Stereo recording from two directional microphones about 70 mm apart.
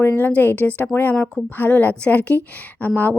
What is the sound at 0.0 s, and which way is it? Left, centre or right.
A woman's voice, left.